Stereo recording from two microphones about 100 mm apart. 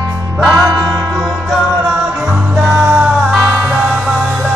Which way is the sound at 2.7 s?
20° right (ahead or behind).